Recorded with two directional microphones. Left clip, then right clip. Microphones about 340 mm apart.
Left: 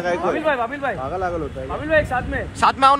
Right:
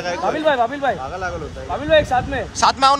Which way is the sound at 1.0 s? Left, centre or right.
Left.